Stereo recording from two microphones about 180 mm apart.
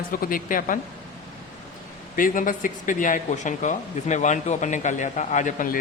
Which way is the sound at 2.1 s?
50° left (ahead or behind).